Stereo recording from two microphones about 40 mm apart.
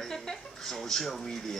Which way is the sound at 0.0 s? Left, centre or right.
Centre.